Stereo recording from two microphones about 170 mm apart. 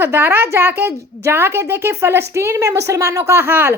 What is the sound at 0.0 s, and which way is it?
A woman's voice, 15° right (ahead or behind).